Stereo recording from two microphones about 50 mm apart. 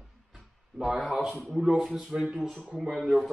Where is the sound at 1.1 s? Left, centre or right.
Centre.